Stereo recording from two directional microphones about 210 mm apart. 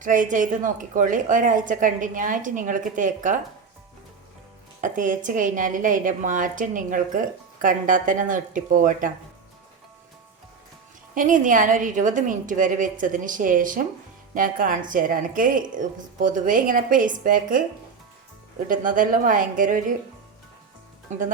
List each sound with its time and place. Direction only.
0.0 s a woman's voice: 40° right (ahead or behind)
4.8 s a woman's voice: 40° right (ahead or behind)
11.1 s a woman's voice: 40° right (ahead or behind)
18.7 s a woman's voice: 40° right (ahead or behind)